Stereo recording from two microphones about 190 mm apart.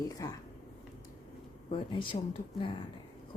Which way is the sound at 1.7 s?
25° left (ahead or behind).